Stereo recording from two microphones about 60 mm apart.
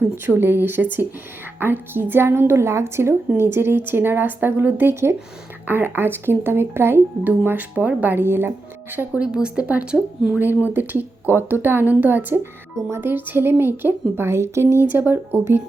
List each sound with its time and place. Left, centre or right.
0.3 s a woman's voice: right
9.1 s speech: centre
10.3 s speech: right